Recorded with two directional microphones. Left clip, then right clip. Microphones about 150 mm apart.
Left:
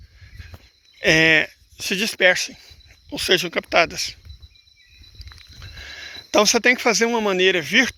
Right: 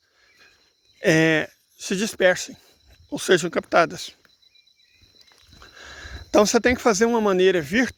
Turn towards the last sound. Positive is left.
turn(degrees=-45)  # may be behind; listen again after turning